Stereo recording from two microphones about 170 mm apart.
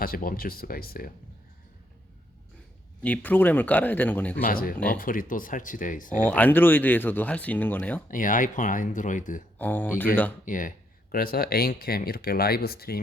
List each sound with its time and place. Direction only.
0.0 s speech: 60° left (ahead or behind)
3.0 s speech: 10° left (ahead or behind)
4.4 s speech: 55° left (ahead or behind)
6.2 s speech: 10° left (ahead or behind)
8.0 s speech: 50° left (ahead or behind)
9.6 s speech: 10° left (ahead or behind)
10.4 s speech: 50° left (ahead or behind)